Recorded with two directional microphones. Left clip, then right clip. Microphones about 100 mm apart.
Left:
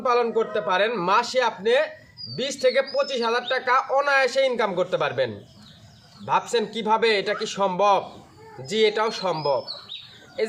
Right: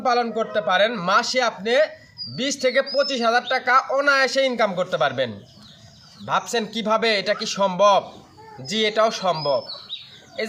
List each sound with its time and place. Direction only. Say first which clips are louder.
0.0 s speech: even; 35° left (ahead or behind)